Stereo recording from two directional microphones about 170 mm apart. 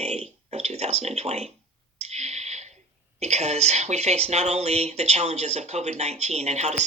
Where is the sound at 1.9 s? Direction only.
40° right (ahead or behind).